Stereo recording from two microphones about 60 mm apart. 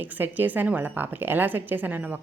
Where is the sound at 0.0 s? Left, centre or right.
Right.